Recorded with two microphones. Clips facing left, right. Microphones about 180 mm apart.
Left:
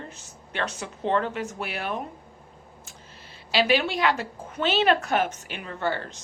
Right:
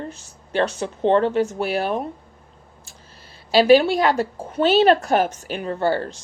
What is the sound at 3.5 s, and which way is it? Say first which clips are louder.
A woman's voice: right 9 dB; 40° right (ahead or behind).